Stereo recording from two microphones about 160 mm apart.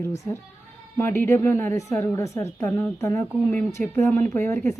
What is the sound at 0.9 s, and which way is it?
A woman's voice, 15° left (ahead or behind).